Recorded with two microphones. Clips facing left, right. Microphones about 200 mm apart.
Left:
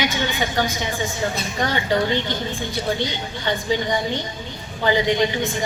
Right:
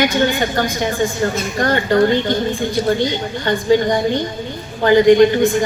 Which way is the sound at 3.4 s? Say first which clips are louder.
Right 8 dB; 50° right (ahead or behind).